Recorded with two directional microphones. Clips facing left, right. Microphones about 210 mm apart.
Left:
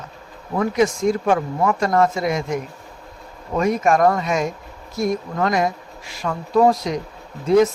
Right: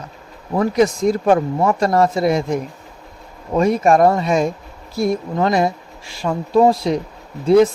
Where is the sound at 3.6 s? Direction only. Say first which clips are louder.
Right 4 dB; 30° right (ahead or behind).